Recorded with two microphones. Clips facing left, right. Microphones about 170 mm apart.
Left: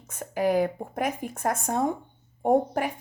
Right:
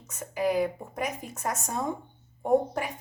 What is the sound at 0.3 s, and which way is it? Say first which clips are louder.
Speech: left 3 dB; 50° left (ahead or behind).